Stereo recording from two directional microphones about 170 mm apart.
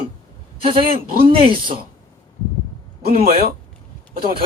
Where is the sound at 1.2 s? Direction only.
30° right (ahead or behind).